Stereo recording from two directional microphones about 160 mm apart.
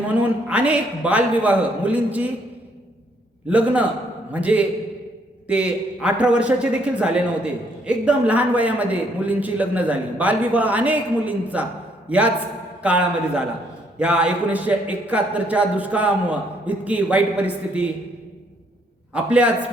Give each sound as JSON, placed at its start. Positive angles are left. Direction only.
{"t": 0.1, "sound": "a man's voice", "side_deg": -10}
{"t": 3.5, "sound": "a man's voice", "side_deg": -10}
{"t": 19.1, "sound": "a man's voice", "side_deg": -10}